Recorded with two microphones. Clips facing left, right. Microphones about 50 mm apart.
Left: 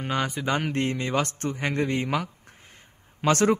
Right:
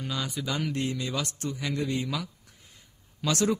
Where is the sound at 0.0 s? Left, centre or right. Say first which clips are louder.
Left 6 dB; left.